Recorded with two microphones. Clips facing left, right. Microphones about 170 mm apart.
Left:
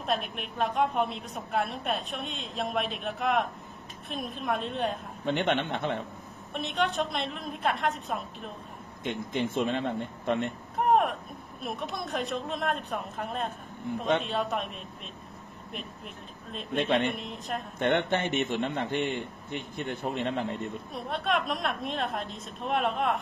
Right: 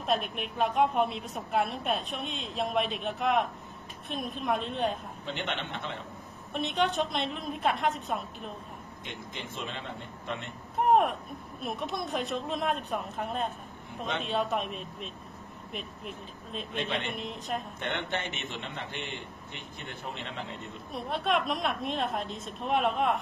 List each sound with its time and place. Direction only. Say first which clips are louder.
0.0 s a woman's voice: right 1 dB; centre (ahead or behind)
5.2 s a man's voice: left 10 dB; 55° left (ahead or behind)
6.5 s a woman's voice: right 1 dB; centre (ahead or behind)
9.0 s a man's voice: left 12 dB; 50° left (ahead or behind)
10.8 s a sound: even; centre (ahead or behind)
11.6 s a woman's voice: right 1 dB; centre (ahead or behind)
16.7 s a man's voice: left 7 dB; 55° left (ahead or behind)
17.1 s a woman's voice: even; centre (ahead or behind)
17.7 s a man's voice: left 7 dB; 50° left (ahead or behind)
20.9 s a woman's voice: right 1 dB; centre (ahead or behind)